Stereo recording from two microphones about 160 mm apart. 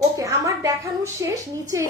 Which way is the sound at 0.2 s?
20° right (ahead or behind).